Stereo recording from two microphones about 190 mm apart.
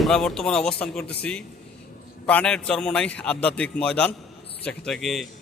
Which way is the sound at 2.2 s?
5° left (ahead or behind).